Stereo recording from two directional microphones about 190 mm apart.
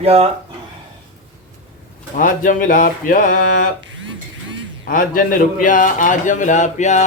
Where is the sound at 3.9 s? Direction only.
75° right (ahead or behind).